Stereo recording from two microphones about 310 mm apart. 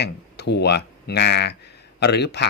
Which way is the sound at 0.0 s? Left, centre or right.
Left.